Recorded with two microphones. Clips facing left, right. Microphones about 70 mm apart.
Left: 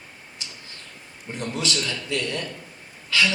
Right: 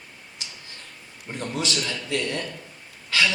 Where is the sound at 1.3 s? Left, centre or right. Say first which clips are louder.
Even; right.